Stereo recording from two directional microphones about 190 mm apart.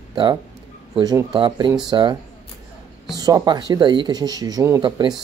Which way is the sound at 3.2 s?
20° right (ahead or behind).